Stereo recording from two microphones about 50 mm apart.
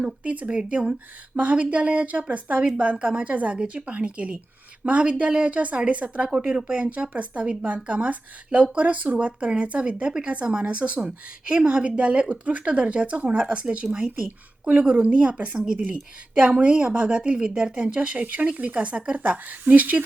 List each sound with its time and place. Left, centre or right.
0.3 s speech: right
15.8 s speech: right